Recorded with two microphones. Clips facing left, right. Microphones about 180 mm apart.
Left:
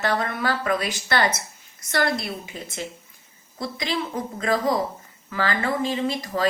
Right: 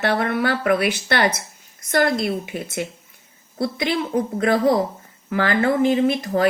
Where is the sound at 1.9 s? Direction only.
50° right (ahead or behind).